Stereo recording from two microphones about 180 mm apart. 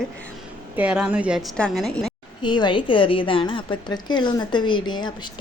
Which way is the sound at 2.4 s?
25° left (ahead or behind).